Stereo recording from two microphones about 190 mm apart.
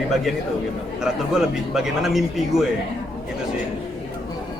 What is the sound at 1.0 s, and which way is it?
A man's voice, 5° right (ahead or behind).